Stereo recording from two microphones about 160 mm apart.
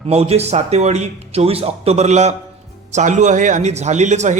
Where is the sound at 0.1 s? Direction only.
40° right (ahead or behind).